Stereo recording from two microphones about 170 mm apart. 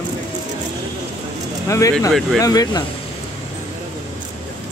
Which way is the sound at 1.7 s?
15° left (ahead or behind).